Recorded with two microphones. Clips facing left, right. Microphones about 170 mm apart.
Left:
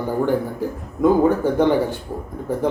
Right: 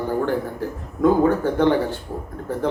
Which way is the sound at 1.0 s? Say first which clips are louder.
Left 1 dB; 10° left (ahead or behind).